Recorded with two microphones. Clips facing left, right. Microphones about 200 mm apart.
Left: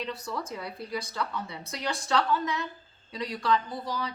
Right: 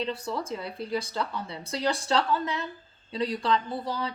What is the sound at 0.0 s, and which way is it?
Speech, 30° right (ahead or behind).